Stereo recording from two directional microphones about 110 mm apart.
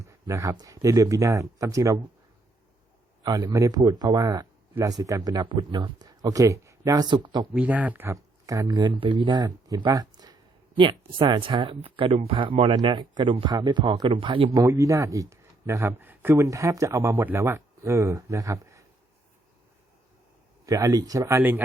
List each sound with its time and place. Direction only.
0.0 s speech: 30° right (ahead or behind)
3.2 s a man's voice: 35° right (ahead or behind)
7.5 s speech: 15° right (ahead or behind)
8.1 s a man's voice: 30° right (ahead or behind)
10.8 s speech: 50° right (ahead or behind)
14.5 s speech: 30° right (ahead or behind)
20.7 s a man's voice: 30° right (ahead or behind)